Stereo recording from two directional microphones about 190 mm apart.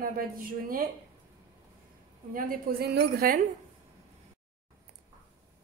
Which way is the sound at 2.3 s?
55° right (ahead or behind).